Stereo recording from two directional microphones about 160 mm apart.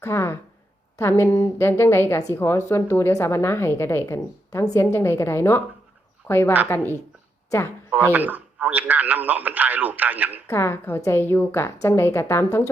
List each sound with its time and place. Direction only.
0.0 s a woman's voice: 15° left (ahead or behind)
7.9 s a man's voice: 10° right (ahead or behind)
10.5 s a woman's voice: 15° left (ahead or behind)